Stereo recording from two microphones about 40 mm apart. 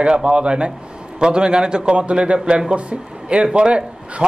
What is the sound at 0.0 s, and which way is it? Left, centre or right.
A man's voice, right.